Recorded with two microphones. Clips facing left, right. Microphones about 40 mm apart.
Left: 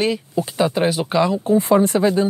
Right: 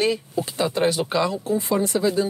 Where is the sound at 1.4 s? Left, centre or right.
Left.